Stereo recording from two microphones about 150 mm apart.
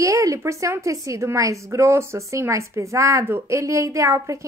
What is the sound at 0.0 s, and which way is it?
A woman's voice, 20° right (ahead or behind).